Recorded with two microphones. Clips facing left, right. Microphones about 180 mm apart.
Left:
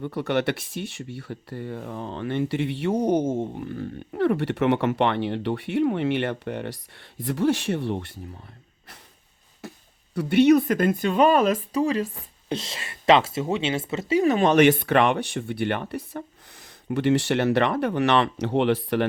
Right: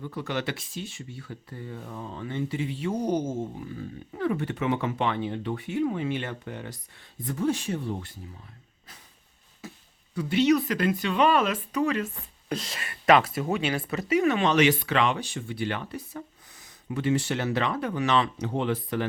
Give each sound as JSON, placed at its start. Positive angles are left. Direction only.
{"t": 0.0, "sound": "speech", "side_deg": 65}
{"t": 10.2, "sound": "speech", "side_deg": 60}